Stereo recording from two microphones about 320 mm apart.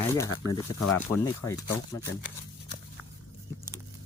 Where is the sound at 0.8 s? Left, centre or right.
Left.